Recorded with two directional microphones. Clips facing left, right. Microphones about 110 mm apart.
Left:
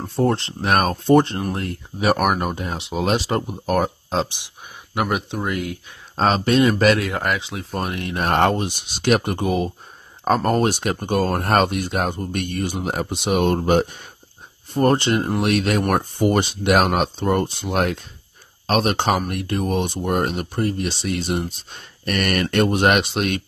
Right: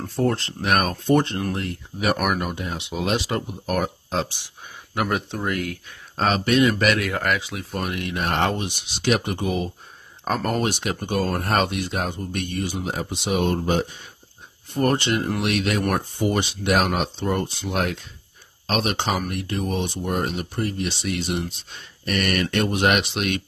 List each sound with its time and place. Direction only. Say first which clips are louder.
0.0 s speech: left 3 dB; 25° left (ahead or behind)
4.9 s speech: left 2 dB; 15° left (ahead or behind)
6.2 s speech: left 2 dB; 30° left (ahead or behind)
7.1 s speech: left 1 dB; 20° left (ahead or behind); by 14.1 s 60° left (ahead or behind)
14.7 s speech: left 4 dB; 35° left (ahead or behind)
16.3 s speech: left 4 dB; 50° left (ahead or behind)
20.5 s speech: left 3 dB; 40° left (ahead or behind)